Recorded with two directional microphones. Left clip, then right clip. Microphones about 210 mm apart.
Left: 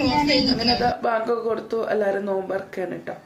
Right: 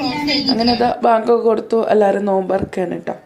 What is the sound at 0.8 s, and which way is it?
Speech, 35° right (ahead or behind).